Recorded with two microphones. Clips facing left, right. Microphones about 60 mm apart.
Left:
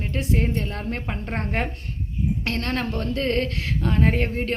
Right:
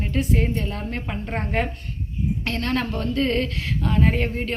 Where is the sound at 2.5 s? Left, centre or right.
Left.